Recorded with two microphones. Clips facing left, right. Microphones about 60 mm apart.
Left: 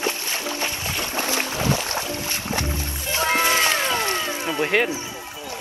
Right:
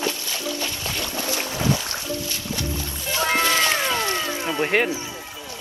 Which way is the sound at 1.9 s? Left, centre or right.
Left.